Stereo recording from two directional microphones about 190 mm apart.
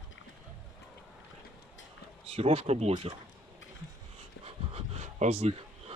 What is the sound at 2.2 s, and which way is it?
Speech, 30° right (ahead or behind).